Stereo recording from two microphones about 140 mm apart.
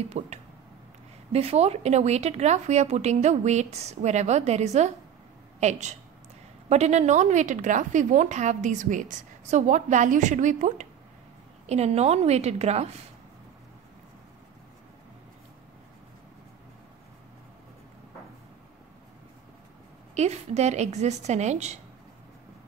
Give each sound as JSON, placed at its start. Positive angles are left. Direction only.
{"t": 0.2, "sound": "speech", "side_deg": -50}
{"t": 11.6, "sound": "speech", "side_deg": -50}
{"t": 20.2, "sound": "speech", "side_deg": -50}